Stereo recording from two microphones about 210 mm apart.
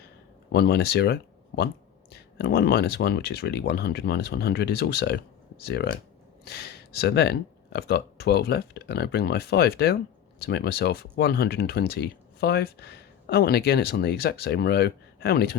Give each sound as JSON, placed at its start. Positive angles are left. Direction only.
{"t": 0.5, "sound": "speech", "side_deg": 50}